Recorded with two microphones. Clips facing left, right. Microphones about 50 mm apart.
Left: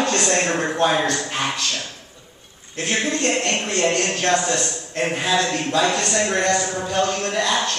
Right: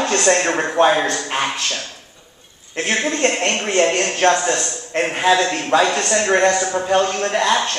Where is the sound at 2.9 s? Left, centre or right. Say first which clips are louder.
Right 2 dB; right.